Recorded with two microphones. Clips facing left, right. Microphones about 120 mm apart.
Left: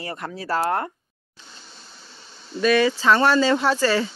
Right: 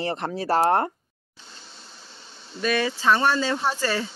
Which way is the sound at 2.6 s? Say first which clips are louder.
Left 5 dB; 90° left.